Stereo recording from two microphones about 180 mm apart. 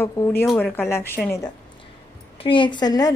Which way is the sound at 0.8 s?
15° left (ahead or behind).